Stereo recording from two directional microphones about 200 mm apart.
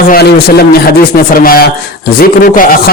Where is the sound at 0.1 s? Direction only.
50° left (ahead or behind).